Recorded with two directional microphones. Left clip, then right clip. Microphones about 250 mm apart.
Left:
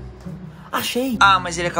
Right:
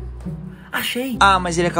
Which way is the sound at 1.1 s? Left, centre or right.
Centre.